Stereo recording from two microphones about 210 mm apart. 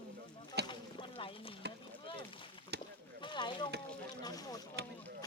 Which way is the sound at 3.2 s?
20° left (ahead or behind).